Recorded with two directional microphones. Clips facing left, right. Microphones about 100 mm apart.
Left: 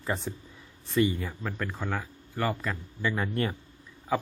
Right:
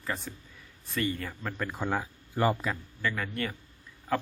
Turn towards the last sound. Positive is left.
turn(degrees=5)  # may be behind; listen again after turning